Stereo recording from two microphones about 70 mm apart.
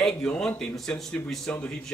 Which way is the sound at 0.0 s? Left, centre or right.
Centre.